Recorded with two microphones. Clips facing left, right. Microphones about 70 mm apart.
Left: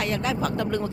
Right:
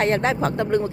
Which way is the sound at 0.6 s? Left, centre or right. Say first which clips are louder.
Right 5 dB; right.